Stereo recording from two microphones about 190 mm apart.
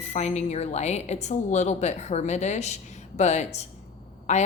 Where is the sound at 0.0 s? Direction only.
35° left (ahead or behind).